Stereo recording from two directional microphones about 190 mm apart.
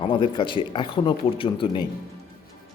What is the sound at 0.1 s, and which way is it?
Speech, 25° left (ahead or behind).